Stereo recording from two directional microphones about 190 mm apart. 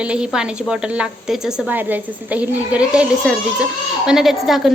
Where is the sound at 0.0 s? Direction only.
5° right (ahead or behind).